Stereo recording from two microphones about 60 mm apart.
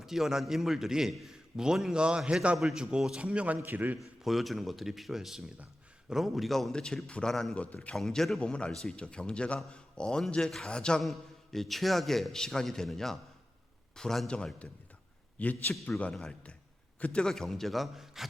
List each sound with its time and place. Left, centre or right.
0.0 s a man's voice: centre
3.2 s a man's voice: centre
4.2 s a man's voice: centre
7.5 s a man's voice: left
7.9 s a man's voice: centre
8.4 s speech: centre
11.0 s a man's voice: centre